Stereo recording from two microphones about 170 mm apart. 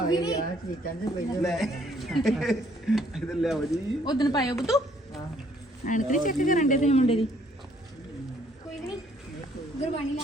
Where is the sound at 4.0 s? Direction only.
25° left (ahead or behind).